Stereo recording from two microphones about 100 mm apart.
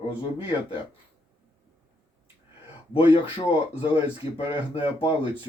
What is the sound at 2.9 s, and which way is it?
Speech, 65° left (ahead or behind).